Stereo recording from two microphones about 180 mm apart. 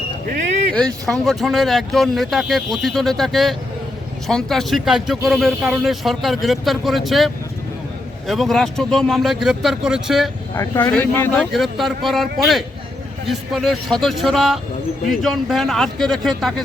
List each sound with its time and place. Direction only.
0.7 s speech: 5° left (ahead or behind)
8.3 s speech: centre (ahead or behind)
10.5 s speech: 15° left (ahead or behind)
11.3 s speech: centre (ahead or behind)